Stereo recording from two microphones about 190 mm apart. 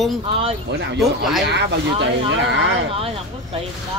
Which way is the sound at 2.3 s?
70° right (ahead or behind).